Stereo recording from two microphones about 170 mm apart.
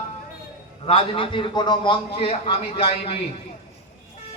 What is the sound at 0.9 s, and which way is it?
A man's voice, 30° left (ahead or behind).